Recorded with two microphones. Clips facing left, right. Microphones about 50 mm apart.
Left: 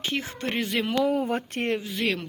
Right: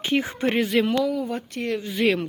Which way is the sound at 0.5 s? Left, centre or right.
Centre.